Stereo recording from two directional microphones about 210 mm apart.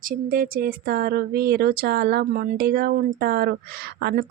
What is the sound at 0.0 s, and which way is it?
Speech, 40° right (ahead or behind).